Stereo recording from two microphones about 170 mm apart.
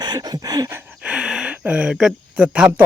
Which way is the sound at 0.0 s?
20° right (ahead or behind).